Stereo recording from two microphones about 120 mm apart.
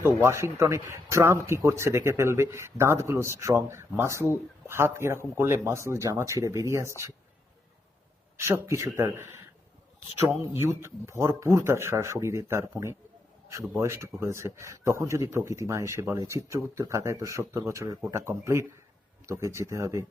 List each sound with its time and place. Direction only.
0.0 s a man's voice: 20° right (ahead or behind)
8.4 s a man's voice: 20° right (ahead or behind)
10.4 s a man's voice: 25° right (ahead or behind)